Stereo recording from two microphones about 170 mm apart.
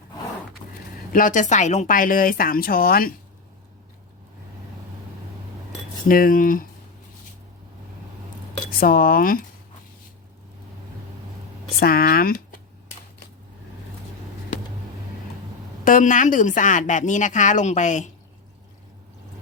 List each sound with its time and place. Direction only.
1.1 s speech: 50° left (ahead or behind)
6.1 s speech: 55° left (ahead or behind)
8.8 s speech: 60° left (ahead or behind)
11.8 s speech: 60° left (ahead or behind)
15.8 s a woman's voice: 50° left (ahead or behind)